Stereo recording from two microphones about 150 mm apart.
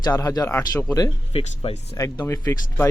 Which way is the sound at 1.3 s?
40° left (ahead or behind).